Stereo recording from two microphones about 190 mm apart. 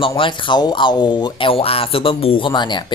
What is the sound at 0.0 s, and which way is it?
Speech, 25° left (ahead or behind).